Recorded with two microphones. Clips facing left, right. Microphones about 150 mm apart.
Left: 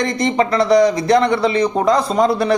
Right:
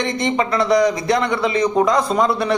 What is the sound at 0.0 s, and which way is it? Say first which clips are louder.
A man's voice: left 3 dB; 40° left (ahead or behind).